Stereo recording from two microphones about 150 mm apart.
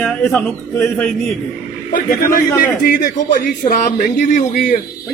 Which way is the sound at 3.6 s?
60° left (ahead or behind).